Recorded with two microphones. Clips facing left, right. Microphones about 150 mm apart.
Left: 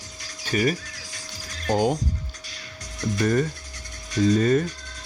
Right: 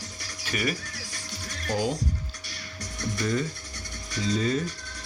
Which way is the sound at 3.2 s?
60° left (ahead or behind).